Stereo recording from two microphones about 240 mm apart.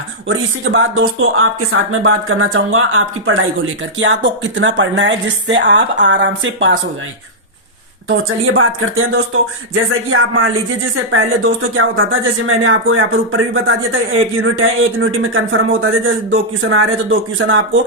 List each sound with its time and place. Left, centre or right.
0.3 s speech: right
8.0 s speech: right
11.8 s speech: right